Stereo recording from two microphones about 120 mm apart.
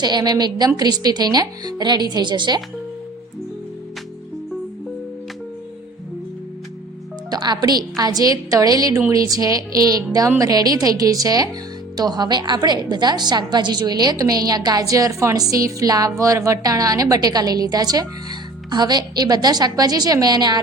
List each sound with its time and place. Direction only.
0.0 s a woman's voice: 35° right (ahead or behind)
7.3 s a woman's voice: 35° right (ahead or behind)